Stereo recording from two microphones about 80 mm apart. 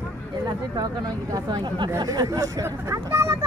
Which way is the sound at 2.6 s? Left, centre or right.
Right.